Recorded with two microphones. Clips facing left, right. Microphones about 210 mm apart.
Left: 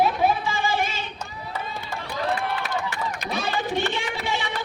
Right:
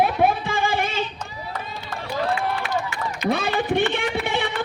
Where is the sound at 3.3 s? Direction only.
55° right (ahead or behind).